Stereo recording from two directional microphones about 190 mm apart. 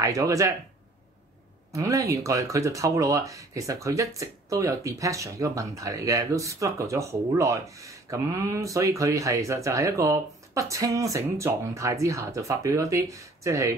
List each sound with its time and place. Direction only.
0.0 s speech: 15° right (ahead or behind)
1.7 s speech: 15° right (ahead or behind)